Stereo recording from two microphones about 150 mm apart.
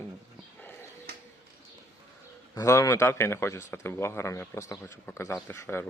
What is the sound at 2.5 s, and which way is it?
A man's voice, 20° left (ahead or behind).